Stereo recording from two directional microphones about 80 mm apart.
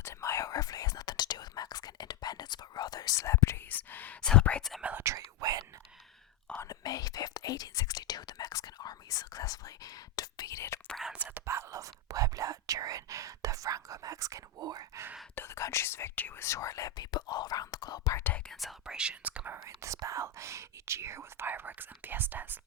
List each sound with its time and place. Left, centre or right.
0.0 s whispering: left
3.7 s whispering: left
4.2 s whispering: centre
4.8 s whispering: centre
5.0 s whispering: right
6.7 s whispering: left
11.1 s whispering: centre
11.4 s whispering: right
14.6 s whispering: right
15.4 s whispering: left
16.6 s whispering: left
18.2 s whispering: left
18.4 s whispering: centre
19.6 s whispering: right